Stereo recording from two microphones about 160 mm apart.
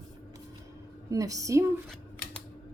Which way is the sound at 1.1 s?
20° right (ahead or behind).